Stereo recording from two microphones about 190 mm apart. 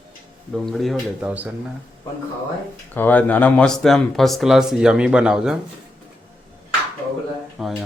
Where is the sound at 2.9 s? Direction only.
10° left (ahead or behind).